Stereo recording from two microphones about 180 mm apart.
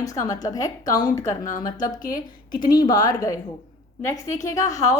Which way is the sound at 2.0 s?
50° left (ahead or behind).